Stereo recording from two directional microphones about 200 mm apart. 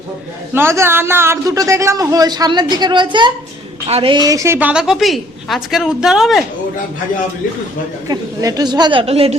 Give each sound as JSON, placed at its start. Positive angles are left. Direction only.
{"t": 0.5, "sound": "a man's voice", "side_deg": -10}
{"t": 8.0, "sound": "a woman's voice", "side_deg": -15}